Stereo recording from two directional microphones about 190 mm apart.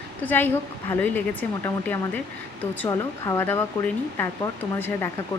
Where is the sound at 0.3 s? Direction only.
10° left (ahead or behind).